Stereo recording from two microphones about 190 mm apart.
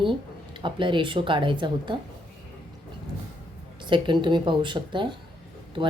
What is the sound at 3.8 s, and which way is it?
A woman's voice, 25° right (ahead or behind).